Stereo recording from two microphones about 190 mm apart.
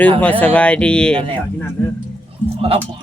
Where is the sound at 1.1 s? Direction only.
30° right (ahead or behind).